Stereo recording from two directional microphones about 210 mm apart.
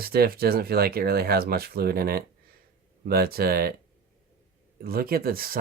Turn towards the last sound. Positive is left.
turn(degrees=-45)  # may be behind; listen again after turning